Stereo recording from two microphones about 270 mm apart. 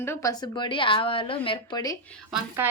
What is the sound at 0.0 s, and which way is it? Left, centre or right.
A woman's voice, centre.